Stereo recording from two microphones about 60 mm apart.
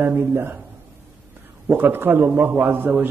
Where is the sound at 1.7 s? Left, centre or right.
Right.